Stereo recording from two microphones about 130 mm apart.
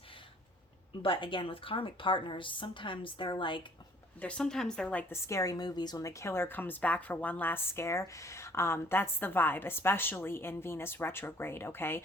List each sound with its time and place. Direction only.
1.0 s a woman's voice: 40° left (ahead or behind)
4.2 s a woman's voice: 10° left (ahead or behind)